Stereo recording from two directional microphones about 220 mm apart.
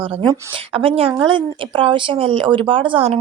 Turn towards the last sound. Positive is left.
turn(degrees=-30)  # may be behind; listen again after turning